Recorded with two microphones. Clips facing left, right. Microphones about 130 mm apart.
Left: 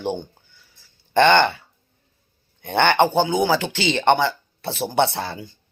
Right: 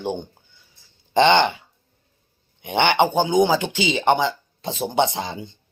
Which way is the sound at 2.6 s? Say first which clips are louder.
Left 1 dB; 15° right (ahead or behind).